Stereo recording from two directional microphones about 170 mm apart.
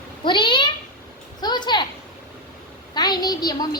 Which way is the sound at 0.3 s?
30° left (ahead or behind).